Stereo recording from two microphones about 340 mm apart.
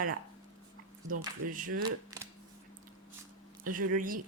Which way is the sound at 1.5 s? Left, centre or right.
Right.